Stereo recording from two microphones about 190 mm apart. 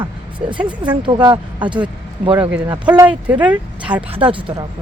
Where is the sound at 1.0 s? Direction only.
25° right (ahead or behind).